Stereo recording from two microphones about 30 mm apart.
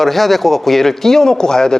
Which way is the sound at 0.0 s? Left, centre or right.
Centre.